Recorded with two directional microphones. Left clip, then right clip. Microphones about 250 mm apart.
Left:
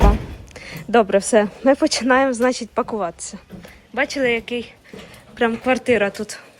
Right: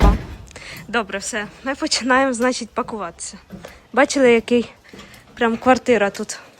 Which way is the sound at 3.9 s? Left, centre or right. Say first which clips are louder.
Right 5 dB; centre.